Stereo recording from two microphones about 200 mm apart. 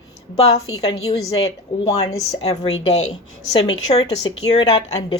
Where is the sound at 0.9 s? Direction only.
30° left (ahead or behind).